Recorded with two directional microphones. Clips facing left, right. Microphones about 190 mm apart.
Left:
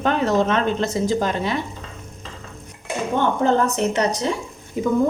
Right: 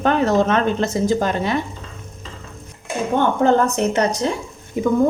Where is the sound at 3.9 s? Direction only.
50° right (ahead or behind).